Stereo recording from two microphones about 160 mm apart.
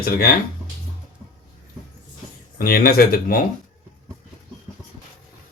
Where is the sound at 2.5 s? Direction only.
70° left (ahead or behind).